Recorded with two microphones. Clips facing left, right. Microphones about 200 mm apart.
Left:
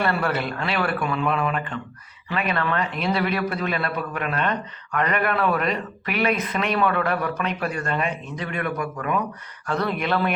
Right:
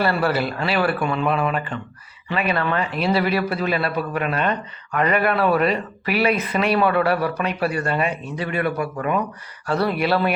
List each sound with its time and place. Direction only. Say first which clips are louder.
0.0 s a man's voice: right 3 dB; 5° right (ahead or behind)
5.3 s speech: right 3 dB; 30° right (ahead or behind)
5.5 s a man's voice: right 5 dB; 5° right (ahead or behind)
8.6 s speech: right 4 dB; 30° right (ahead or behind)
9.6 s speech: right 4 dB; 10° right (ahead or behind)